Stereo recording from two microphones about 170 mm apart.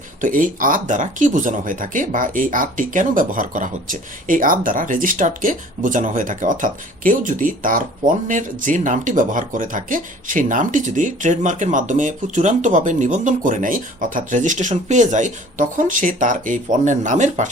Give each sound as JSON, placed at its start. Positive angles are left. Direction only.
{"t": 0.2, "sound": "speech", "side_deg": -50}